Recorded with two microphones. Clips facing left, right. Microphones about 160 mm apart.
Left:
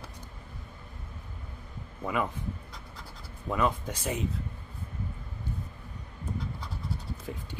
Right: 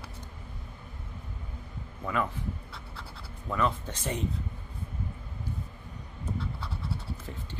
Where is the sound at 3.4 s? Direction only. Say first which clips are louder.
Left 1 dB; 15° left (ahead or behind).